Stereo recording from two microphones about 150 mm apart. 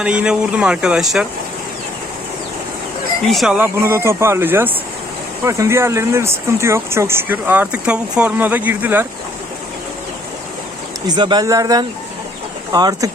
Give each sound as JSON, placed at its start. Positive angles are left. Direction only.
{"t": 0.0, "sound": "speech", "side_deg": -5}
{"t": 3.2, "sound": "speech", "side_deg": 0}
{"t": 3.8, "sound": "speech", "side_deg": -15}
{"t": 11.0, "sound": "speech", "side_deg": -30}